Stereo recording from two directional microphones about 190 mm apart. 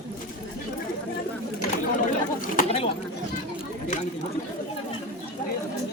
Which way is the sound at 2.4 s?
45° left (ahead or behind).